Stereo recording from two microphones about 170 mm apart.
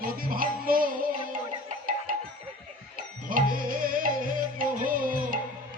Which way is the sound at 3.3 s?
55° right (ahead or behind).